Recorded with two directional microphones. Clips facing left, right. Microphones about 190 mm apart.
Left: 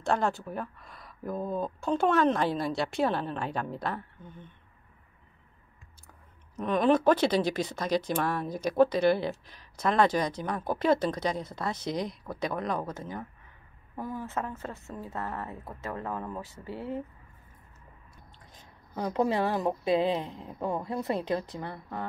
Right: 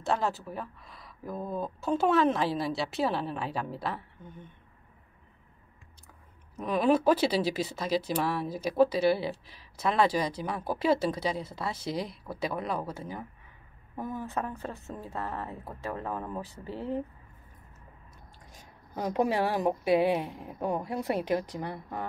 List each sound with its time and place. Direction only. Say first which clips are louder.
0.0 s speech: left 2 dB; 5° right (ahead or behind)
6.5 s a woman's voice: left 1 dB; 5° right (ahead or behind)
18.1 s a woman's voice: right 1 dB; 10° right (ahead or behind)